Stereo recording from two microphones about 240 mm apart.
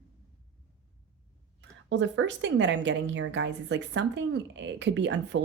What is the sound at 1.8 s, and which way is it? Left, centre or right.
A woman's voice, right.